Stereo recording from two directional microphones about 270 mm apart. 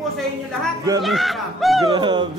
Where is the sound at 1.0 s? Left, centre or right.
Centre.